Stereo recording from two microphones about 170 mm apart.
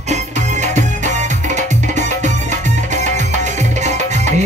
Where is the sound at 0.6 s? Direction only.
45° right (ahead or behind).